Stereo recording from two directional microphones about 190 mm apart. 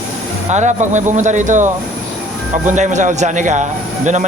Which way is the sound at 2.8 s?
40° right (ahead or behind).